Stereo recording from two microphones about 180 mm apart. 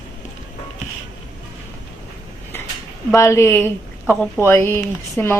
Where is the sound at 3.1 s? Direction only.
15° left (ahead or behind).